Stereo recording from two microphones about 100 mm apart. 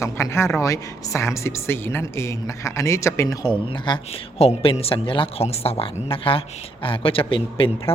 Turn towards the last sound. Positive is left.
turn(degrees=60)  # may be behind; listen again after turning